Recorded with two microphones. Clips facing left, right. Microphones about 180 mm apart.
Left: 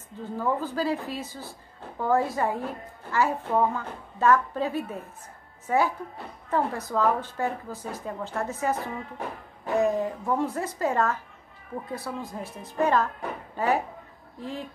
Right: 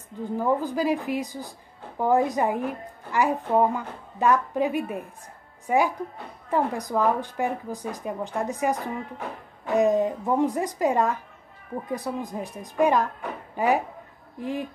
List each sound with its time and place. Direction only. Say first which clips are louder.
0.2 s a woman's voice: right 4 dB; 15° right (ahead or behind)